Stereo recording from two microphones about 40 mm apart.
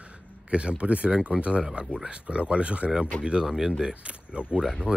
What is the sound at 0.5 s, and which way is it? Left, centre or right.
Speech, right.